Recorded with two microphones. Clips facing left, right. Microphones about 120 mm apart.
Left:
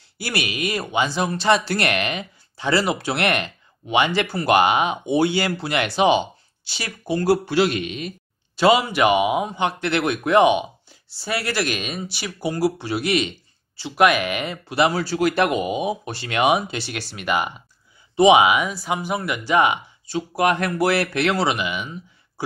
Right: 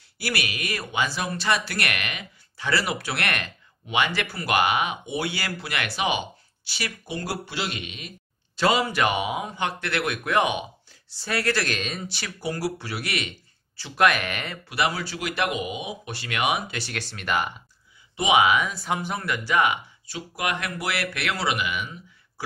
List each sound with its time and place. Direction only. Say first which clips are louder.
0.2 s speech: left 4 dB; 25° left (ahead or behind)
7.1 s a man's voice: left 16 dB; 45° left (ahead or behind)
8.5 s speech: left 5 dB; 15° left (ahead or behind)
11.1 s speech: left 1 dB; 10° left (ahead or behind)
14.7 s speech: left 6 dB; 30° left (ahead or behind)
16.8 s speech: left 4 dB; 15° left (ahead or behind)
18.1 s speech: left 8 dB; 30° left (ahead or behind)
18.4 s speech: left 3 dB; 10° left (ahead or behind)